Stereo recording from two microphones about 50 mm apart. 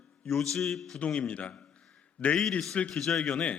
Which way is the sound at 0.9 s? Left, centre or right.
Left.